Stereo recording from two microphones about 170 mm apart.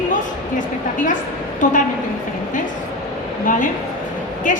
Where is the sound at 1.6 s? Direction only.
50° left (ahead or behind).